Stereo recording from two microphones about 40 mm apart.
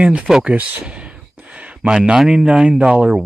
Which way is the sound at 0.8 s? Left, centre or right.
Right.